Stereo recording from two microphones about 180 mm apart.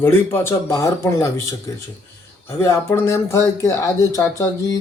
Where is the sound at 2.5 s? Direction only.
15° left (ahead or behind).